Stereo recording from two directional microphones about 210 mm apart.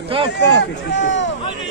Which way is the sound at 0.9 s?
60° left (ahead or behind).